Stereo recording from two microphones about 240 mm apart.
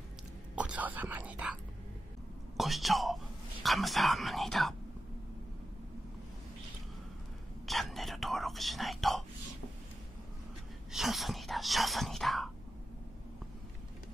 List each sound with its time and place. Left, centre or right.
0.6 s speech: centre
7.6 s whispering: centre
10.9 s whispering: centre